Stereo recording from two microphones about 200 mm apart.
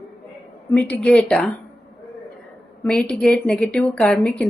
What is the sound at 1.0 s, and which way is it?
Speech, 5° left (ahead or behind).